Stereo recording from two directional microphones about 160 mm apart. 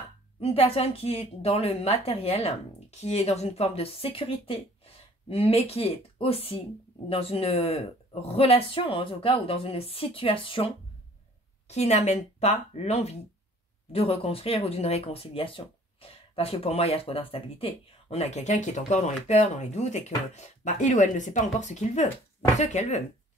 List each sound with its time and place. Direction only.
0.4 s speech: 40° left (ahead or behind)